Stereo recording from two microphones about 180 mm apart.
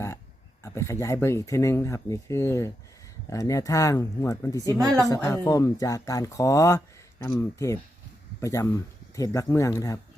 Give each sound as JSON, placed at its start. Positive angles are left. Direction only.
{"t": 0.6, "sound": "speech", "side_deg": 15}